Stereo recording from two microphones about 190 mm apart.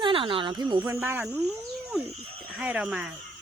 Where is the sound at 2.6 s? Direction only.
5° right (ahead or behind).